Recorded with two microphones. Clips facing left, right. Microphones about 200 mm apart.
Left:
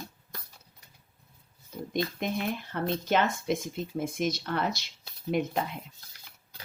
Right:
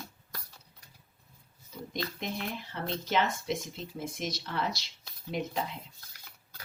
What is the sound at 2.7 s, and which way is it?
A woman's voice, 50° left (ahead or behind).